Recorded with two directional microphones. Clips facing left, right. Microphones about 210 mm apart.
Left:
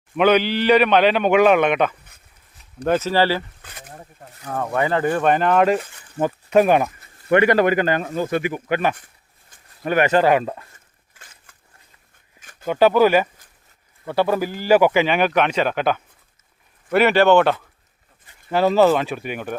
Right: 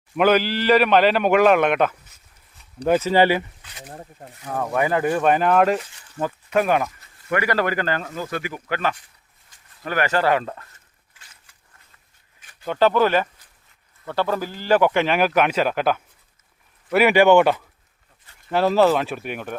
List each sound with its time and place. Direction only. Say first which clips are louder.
0.2 s speech: left 2 dB; 5° right (ahead or behind)
3.6 s speech: left 1 dB; 50° left (ahead or behind)
4.4 s speech: even; 5° right (ahead or behind)
6.1 s speech: left 5 dB; 20° left (ahead or behind)
11.5 s a sound: left 3 dB; 50° left (ahead or behind)
12.6 s speech: left 3 dB; 10° left (ahead or behind); by 17.6 s 10° right (ahead or behind)
18.5 s speech: left 2 dB; centre (ahead or behind)